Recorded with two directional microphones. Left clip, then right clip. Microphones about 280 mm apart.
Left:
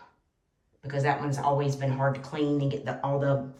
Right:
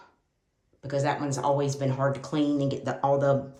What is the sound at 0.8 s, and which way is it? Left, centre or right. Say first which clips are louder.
Speech: even; centre.